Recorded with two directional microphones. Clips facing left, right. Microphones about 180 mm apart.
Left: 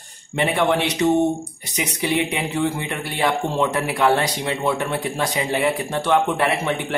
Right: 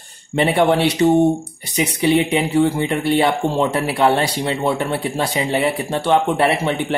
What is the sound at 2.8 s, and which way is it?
Speech, 30° right (ahead or behind).